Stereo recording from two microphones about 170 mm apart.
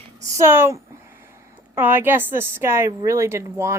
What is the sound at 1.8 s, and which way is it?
A woman's voice, 10° right (ahead or behind).